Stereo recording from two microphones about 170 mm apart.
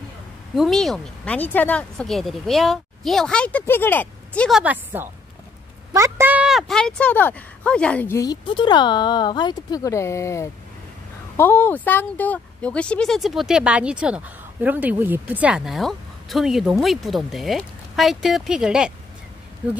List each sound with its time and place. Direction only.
0.6 s speech: centre (ahead or behind)
4.6 s a woman's voice: 10° right (ahead or behind); by 8.2 s 10° left (ahead or behind)
8.2 s speech: 25° left (ahead or behind); by 18.9 s 5° right (ahead or behind)